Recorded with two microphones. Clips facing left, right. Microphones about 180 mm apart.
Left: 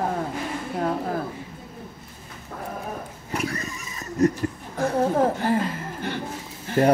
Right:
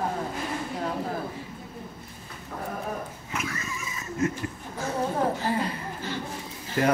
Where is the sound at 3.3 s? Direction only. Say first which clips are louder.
Left 7 dB; 35° left (ahead or behind).